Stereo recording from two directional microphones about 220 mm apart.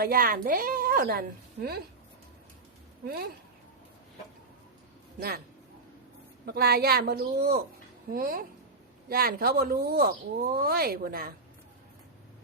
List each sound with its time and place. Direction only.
0.0 s a woman's voice: 40° right (ahead or behind)
6.4 s a woman's voice: 45° right (ahead or behind)